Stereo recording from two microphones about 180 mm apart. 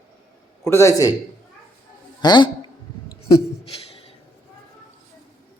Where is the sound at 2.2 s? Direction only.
25° left (ahead or behind).